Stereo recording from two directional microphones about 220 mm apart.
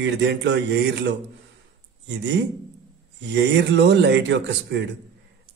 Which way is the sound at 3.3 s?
55° right (ahead or behind).